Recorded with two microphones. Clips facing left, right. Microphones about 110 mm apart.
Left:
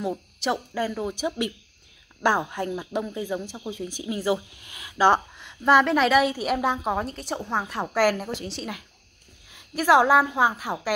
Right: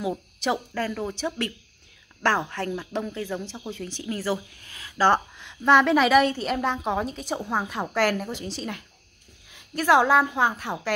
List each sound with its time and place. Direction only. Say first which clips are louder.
0.0 s speech: even; centre (ahead or behind)
5.4 s a woman's voice: right 1 dB; centre (ahead or behind)